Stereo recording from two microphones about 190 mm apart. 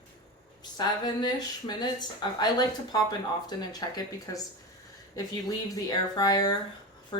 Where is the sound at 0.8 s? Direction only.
20° left (ahead or behind).